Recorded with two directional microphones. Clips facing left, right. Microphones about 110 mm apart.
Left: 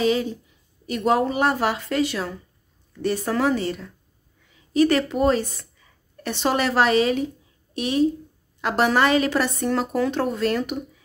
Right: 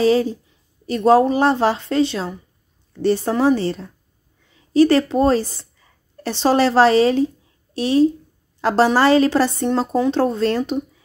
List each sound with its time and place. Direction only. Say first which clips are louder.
0.0 s a woman's voice: right 5 dB; 35° right (ahead or behind)